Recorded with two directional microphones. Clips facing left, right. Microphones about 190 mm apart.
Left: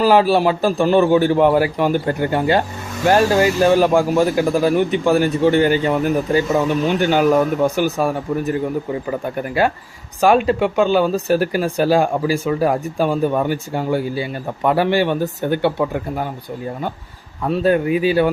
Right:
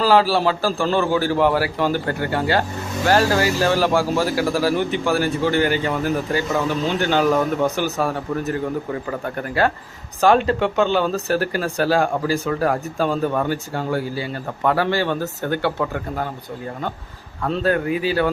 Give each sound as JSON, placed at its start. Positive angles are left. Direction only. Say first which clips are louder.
{"t": 0.0, "sound": "speech", "louder": "left 3 dB", "side_deg": 15}
{"t": 17.4, "sound": "speech", "louder": "left 4 dB", "side_deg": 15}